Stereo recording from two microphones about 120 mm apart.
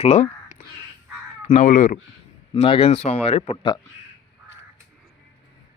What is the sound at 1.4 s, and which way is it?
Speech, 80° left.